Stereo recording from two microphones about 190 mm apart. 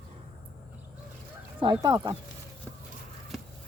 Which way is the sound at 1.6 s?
20° right (ahead or behind).